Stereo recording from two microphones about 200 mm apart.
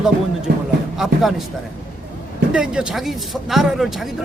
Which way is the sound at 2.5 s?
5° right (ahead or behind).